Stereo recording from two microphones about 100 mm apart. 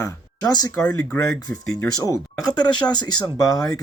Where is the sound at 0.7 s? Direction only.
15° left (ahead or behind).